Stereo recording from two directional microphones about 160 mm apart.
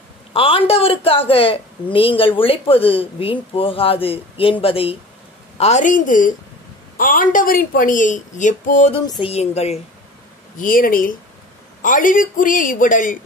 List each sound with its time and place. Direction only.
0.3 s speech: 35° left (ahead or behind)
5.6 s a woman's voice: 45° left (ahead or behind)
9.2 s speech: 40° left (ahead or behind)
10.6 s a woman's voice: 60° left (ahead or behind)